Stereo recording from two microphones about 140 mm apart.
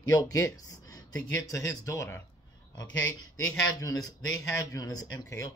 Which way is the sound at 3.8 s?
25° left (ahead or behind).